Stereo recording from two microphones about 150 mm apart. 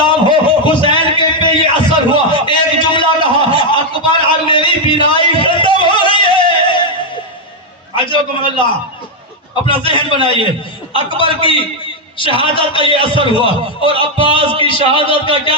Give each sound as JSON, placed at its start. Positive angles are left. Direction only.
{"t": 0.0, "sound": "a sound", "side_deg": 35}
{"t": 3.5, "sound": "a man's voice", "side_deg": 35}
{"t": 5.4, "sound": "music", "side_deg": 35}
{"t": 7.9, "sound": "a man's voice", "side_deg": 35}
{"t": 9.6, "sound": "a man's voice", "side_deg": 35}